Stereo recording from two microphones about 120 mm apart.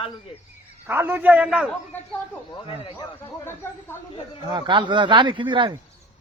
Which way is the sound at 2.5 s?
50° left (ahead or behind).